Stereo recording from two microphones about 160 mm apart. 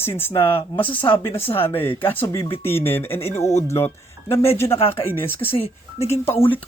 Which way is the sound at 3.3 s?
45° left (ahead or behind).